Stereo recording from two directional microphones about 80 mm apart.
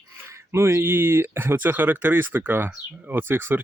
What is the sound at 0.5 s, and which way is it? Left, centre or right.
Speech, right.